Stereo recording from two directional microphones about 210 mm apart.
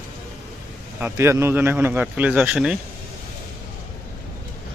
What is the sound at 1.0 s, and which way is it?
Speech, 10° right (ahead or behind).